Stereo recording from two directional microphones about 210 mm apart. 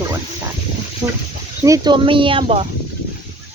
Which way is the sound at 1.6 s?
15° right (ahead or behind).